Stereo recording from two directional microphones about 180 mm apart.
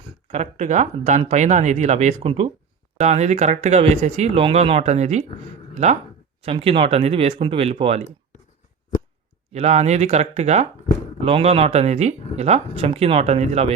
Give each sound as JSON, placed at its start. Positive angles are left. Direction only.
{"t": 0.3, "sound": "speech", "side_deg": -40}
{"t": 9.5, "sound": "speech", "side_deg": -40}